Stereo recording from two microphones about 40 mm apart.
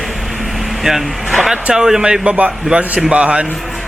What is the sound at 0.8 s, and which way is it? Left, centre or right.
Speech, centre.